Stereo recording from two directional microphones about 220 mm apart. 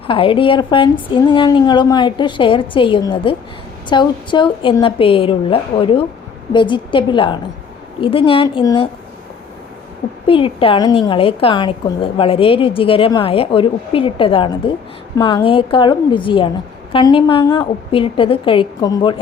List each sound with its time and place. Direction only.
0.1 s a woman's voice: 25° left (ahead or behind)
10.2 s a woman's voice: 25° left (ahead or behind)